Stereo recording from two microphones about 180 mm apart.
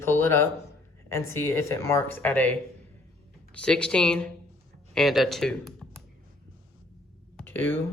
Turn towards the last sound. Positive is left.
turn(degrees=10)  # may be behind; listen again after turning